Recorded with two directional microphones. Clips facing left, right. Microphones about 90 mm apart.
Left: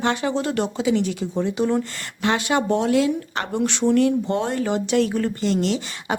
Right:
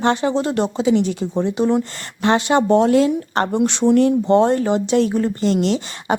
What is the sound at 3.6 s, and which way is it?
Speech, 25° right (ahead or behind).